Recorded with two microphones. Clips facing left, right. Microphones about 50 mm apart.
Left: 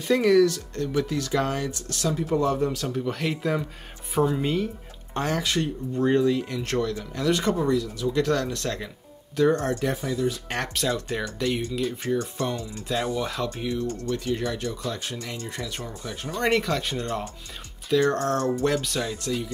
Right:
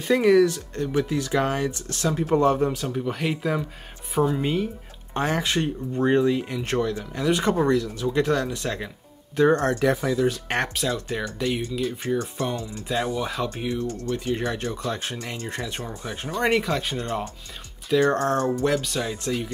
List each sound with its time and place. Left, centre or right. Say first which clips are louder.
0.1 s speech: right 1 dB; right
2.7 s speech: right 1 dB; centre
5.1 s speech: right 2 dB; right
7.5 s speech: right 3 dB; right
8.1 s speech: right 1 dB; centre
9.4 s speech: right 2 dB; right
9.8 s speech: right 5 dB; right
10.7 s speech: even; centre; by 15.8 s right
15.9 s speech: right 2 dB; centre
17.9 s speech: right 2 dB; right
18.5 s speech: right 1 dB; centre